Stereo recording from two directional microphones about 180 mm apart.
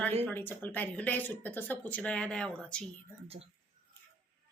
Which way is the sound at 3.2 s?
35° right (ahead or behind).